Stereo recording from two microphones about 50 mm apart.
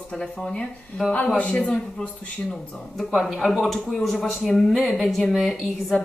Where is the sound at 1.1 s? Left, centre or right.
Left.